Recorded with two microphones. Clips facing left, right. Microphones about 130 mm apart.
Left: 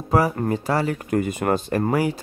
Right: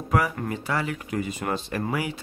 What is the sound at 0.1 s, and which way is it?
Speech, 35° left (ahead or behind).